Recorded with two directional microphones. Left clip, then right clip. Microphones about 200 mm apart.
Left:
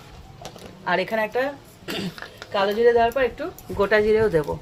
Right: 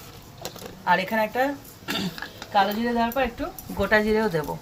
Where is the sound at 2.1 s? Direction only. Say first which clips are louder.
Even; 45° left (ahead or behind).